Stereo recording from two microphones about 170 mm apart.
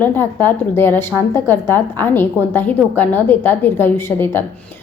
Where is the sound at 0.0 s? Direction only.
10° left (ahead or behind).